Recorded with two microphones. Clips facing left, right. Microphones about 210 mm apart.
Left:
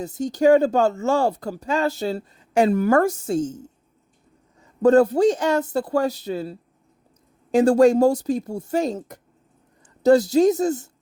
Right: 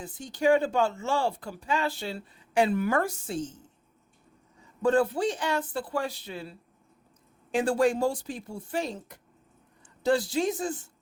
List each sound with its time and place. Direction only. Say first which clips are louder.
0.0 s speech: left 8 dB; 40° left (ahead or behind)